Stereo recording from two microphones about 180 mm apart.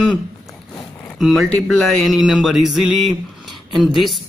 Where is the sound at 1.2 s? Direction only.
Centre (ahead or behind).